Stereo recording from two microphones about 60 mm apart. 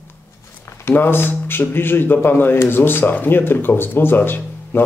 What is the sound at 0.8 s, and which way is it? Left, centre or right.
Speech, left.